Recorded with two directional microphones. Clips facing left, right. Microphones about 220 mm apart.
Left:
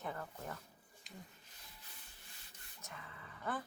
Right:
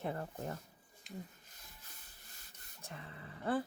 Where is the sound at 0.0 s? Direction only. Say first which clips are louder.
Right 5 dB; 30° right (ahead or behind).